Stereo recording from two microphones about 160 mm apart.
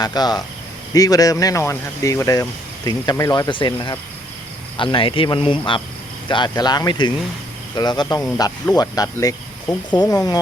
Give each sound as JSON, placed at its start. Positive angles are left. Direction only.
{"t": 0.0, "sound": "speech", "side_deg": 25}